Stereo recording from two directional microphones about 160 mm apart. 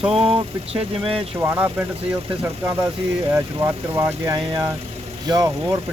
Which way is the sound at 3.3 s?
20° right (ahead or behind).